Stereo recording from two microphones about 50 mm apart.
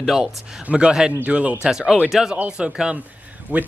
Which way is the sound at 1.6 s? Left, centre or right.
Centre.